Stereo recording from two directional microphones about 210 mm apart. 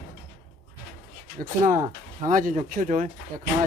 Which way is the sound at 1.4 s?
40° right (ahead or behind).